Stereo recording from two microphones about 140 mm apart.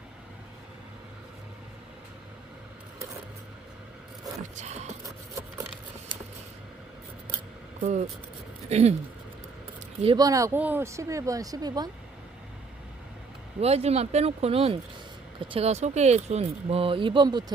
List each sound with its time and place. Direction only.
4.5 s speech: 55° right (ahead or behind)
7.8 s speech: 60° right (ahead or behind)
8.7 s speech: 50° right (ahead or behind)
10.2 s speech: 25° right (ahead or behind)
13.6 s speech: 50° right (ahead or behind)